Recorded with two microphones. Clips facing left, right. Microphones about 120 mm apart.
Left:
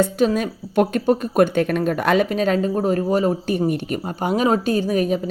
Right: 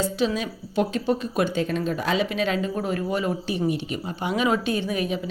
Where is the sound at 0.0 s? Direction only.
50° left (ahead or behind).